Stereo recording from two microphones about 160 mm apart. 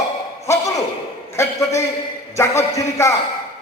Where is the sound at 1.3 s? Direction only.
20° left (ahead or behind).